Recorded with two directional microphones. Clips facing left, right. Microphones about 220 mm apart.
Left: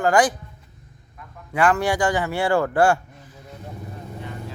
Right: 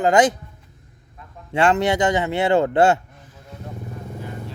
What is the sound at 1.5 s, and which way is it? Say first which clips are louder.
A man's voice: right 2 dB; 25° right (ahead or behind).